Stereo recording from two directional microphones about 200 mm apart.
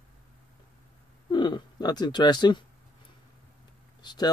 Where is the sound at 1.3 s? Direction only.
25° left (ahead or behind).